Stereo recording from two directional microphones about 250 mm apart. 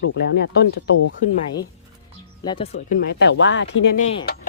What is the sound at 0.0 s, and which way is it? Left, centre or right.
Speech, left.